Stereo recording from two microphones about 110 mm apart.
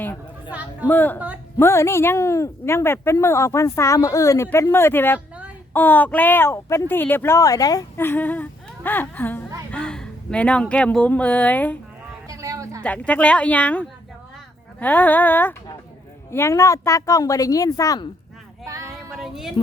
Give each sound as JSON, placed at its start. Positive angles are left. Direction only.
{"t": 0.5, "sound": "speech", "side_deg": -15}
{"t": 0.9, "sound": "speech", "side_deg": 15}
{"t": 7.9, "sound": "a woman's voice", "side_deg": 20}
{"t": 12.3, "sound": "a sound", "side_deg": -30}
{"t": 12.8, "sound": "speech", "side_deg": 10}
{"t": 19.1, "sound": "music", "side_deg": -5}